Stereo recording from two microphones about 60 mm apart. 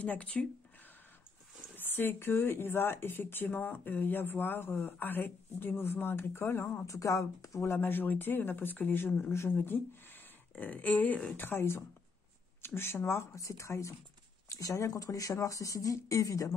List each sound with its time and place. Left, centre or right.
0.0 s speech: left
1.8 s speech: left
6.9 s speech: left
7.6 s speech: left
11.3 s speech: left